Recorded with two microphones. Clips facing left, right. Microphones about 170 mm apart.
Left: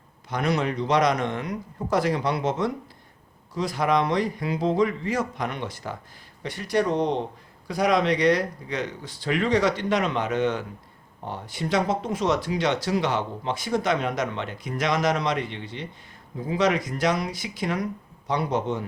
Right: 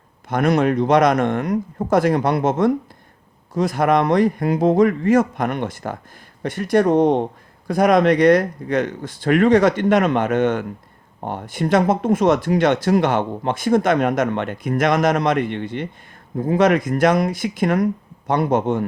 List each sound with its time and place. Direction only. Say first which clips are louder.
0.3 s speech: right 8 dB; 50° right (ahead or behind)